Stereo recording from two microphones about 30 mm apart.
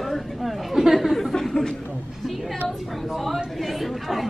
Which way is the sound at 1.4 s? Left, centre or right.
Centre.